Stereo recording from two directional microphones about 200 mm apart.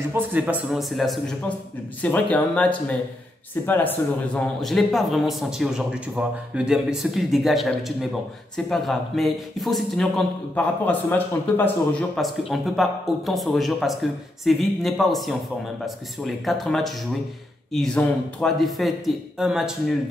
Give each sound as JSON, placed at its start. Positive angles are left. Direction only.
{"t": 0.1, "sound": "a man's voice", "side_deg": -10}